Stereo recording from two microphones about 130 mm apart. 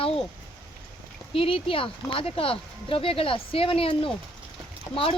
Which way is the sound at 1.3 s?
45° left (ahead or behind).